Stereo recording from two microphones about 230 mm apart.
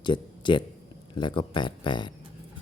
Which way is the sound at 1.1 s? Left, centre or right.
Left.